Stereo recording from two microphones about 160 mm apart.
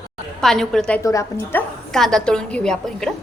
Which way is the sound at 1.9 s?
5° left (ahead or behind).